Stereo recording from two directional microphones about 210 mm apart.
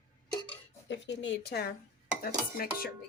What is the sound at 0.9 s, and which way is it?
Dishes, 60° left (ahead or behind).